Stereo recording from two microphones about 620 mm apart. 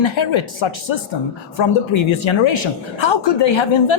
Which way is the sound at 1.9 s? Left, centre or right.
Left.